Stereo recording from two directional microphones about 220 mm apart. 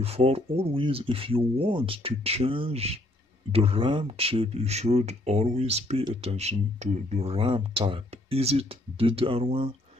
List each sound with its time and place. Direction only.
0.0 s speech: 25° right (ahead or behind)